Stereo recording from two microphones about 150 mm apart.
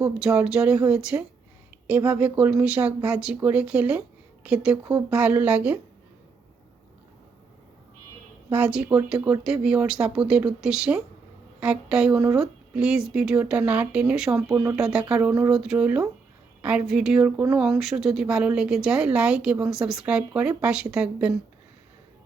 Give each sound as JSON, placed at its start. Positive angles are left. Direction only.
{"t": 0.0, "sound": "speech", "side_deg": -5}
{"t": 8.4, "sound": "speech", "side_deg": -10}
{"t": 14.5, "sound": "speech", "side_deg": -20}
{"t": 14.8, "sound": "speech", "side_deg": -5}